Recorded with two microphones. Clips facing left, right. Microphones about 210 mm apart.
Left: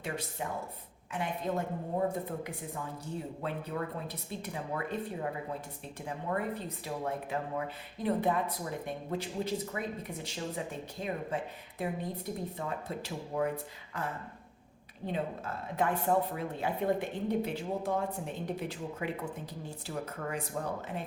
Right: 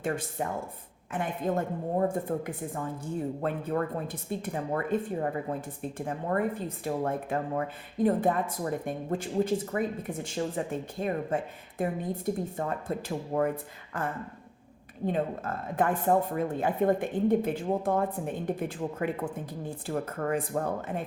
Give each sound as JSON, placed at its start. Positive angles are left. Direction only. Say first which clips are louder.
{"t": 0.0, "sound": "speech", "louder": "right 6 dB", "side_deg": -50}